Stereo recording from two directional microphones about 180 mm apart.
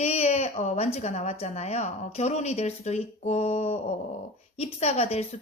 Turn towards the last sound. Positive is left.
turn(degrees=35)  # may be behind; listen again after turning